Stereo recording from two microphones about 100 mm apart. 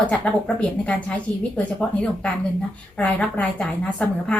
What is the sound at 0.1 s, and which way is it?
A woman's voice, 10° left (ahead or behind).